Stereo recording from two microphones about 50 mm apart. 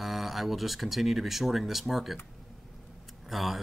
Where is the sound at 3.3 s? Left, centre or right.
Centre.